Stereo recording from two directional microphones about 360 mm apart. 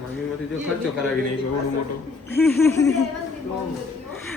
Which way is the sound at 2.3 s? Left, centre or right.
Centre.